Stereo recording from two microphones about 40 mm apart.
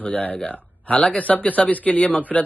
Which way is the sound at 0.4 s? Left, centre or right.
Left.